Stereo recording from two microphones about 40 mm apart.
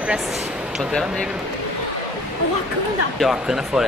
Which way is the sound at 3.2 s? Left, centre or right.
Centre.